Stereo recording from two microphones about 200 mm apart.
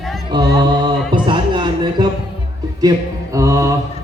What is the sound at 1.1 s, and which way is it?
Music, 25° right (ahead or behind).